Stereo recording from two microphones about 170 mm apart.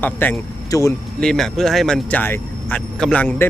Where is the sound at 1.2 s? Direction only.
Centre (ahead or behind).